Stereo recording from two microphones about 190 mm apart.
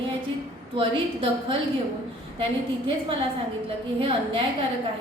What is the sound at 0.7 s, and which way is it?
Speech, 30° right (ahead or behind).